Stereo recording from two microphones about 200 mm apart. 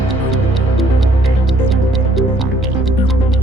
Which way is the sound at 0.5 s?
Centre (ahead or behind).